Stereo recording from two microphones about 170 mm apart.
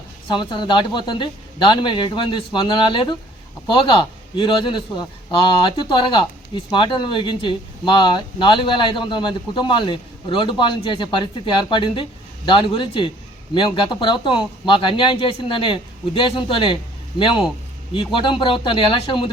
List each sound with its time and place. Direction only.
0.3 s speech: 25° left (ahead or behind)